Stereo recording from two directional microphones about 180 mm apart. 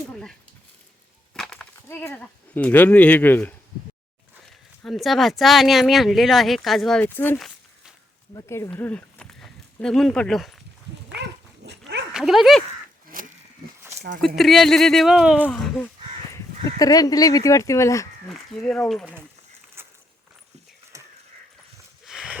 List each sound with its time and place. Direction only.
0.1 s dog: 5° left (ahead or behind)
1.3 s speech: 5° left (ahead or behind)
4.8 s speech: centre (ahead or behind)
7.3 s a sound: centre (ahead or behind)
8.3 s speech: 15° left (ahead or behind); by 10.6 s centre (ahead or behind)
11.6 s dog: 70° right (ahead or behind)
12.1 s speech: centre (ahead or behind)
13.1 s pig: 50° right (ahead or behind)
14.3 s speech: centre (ahead or behind)
16.3 s speech: 20° left (ahead or behind)
18.3 s speech: 5° left (ahead or behind)
19.8 s walk: 15° right (ahead or behind)
20.9 s a sound: 20° right (ahead or behind)
22.0 s a sound: centre (ahead or behind)